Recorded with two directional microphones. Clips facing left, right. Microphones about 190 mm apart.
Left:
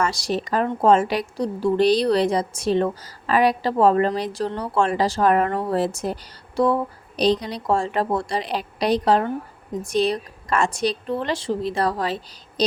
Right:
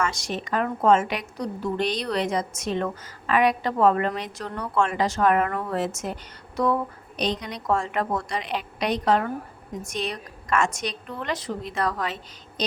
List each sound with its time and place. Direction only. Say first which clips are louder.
0.0 s a woman's voice: left 4 dB; 35° left (ahead or behind)